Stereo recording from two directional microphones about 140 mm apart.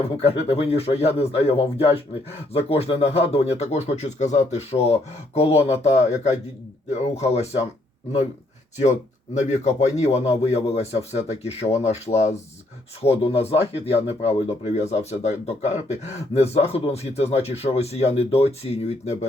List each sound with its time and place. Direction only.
0.2 s speech: 45° left (ahead or behind)
8.8 s speech: 55° left (ahead or behind)